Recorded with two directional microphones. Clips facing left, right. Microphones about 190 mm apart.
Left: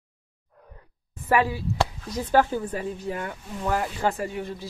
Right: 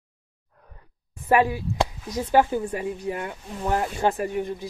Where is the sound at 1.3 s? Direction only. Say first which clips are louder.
Right 2 dB; 15° right (ahead or behind).